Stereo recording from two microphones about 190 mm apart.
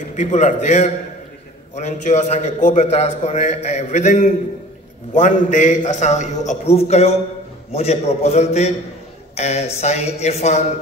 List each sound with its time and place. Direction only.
0.1 s a man's voice: 40° left (ahead or behind)